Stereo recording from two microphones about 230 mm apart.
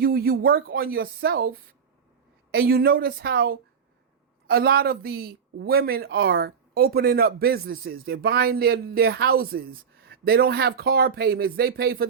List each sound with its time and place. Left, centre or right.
0.0 s speech: right